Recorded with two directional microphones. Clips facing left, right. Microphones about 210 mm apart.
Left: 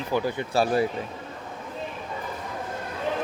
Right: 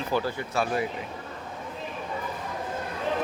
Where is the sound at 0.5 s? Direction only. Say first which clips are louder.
Left 5 dB; 35° left (ahead or behind).